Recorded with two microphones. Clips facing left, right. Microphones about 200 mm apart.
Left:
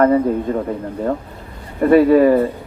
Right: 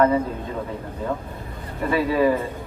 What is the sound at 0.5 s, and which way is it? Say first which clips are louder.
Speech: left 9 dB; 50° left (ahead or behind).